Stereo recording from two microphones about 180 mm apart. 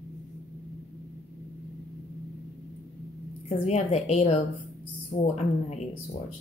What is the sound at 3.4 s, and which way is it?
A woman's voice, 35° left (ahead or behind).